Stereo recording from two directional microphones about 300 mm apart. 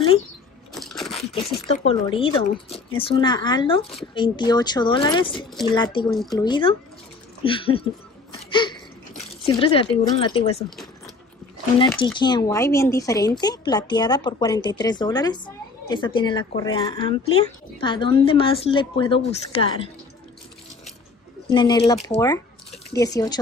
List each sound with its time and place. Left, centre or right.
0.7 s crunch: centre
1.3 s speech: centre
8.5 s a sound: centre
9.4 s speech: centre
12.2 s speech: centre
21.5 s speech: centre
22.7 s a sound: centre
23.0 s speech: centre